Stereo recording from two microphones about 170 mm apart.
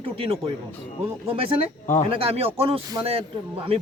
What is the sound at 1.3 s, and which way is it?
A man's voice, 35° right (ahead or behind).